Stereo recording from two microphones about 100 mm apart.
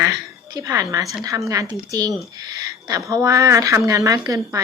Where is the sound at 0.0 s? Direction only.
35° right (ahead or behind).